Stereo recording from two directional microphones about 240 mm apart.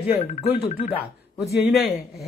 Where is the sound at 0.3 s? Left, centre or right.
Left.